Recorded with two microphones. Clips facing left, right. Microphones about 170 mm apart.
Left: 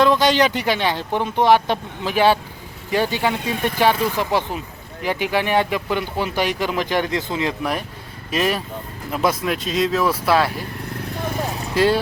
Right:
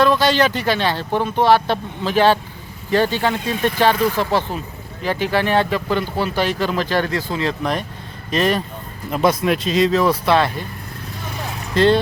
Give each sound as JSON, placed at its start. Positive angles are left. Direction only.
{"t": 0.0, "sound": "speech", "side_deg": 15}
{"t": 11.7, "sound": "speech", "side_deg": 10}